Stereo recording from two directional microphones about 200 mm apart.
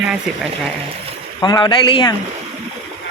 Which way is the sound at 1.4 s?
20° left (ahead or behind).